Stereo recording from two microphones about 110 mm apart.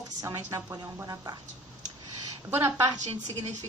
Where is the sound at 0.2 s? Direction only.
30° right (ahead or behind).